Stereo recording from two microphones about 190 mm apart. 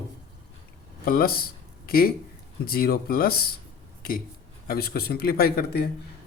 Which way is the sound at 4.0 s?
50° left (ahead or behind).